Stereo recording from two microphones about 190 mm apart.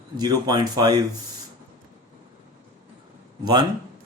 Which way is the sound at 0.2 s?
20° right (ahead or behind).